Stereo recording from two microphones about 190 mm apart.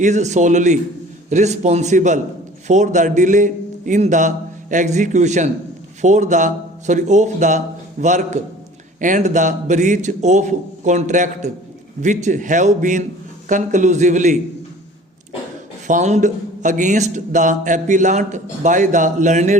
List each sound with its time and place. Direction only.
0.0 s a man's voice: 40° right (ahead or behind)
15.9 s speech: 40° right (ahead or behind)